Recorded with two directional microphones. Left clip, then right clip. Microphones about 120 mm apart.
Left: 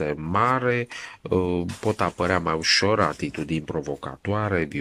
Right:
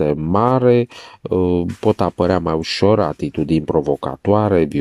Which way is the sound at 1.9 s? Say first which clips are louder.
Right 6 dB; 35° right (ahead or behind).